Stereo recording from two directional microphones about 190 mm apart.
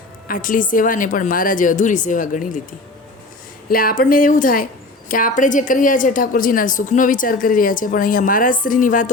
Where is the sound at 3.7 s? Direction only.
50° left (ahead or behind).